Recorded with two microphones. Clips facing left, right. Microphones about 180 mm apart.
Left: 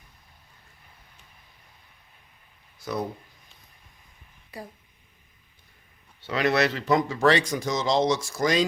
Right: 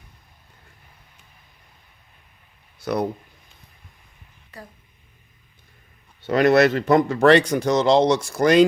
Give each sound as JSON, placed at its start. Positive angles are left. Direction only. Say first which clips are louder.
{"t": 2.8, "sound": "speech", "louder": "right 7 dB", "side_deg": -70}
{"t": 6.2, "sound": "speech", "louder": "right 8 dB", "side_deg": -50}